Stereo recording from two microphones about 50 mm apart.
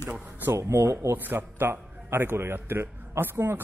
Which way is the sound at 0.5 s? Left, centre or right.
Right.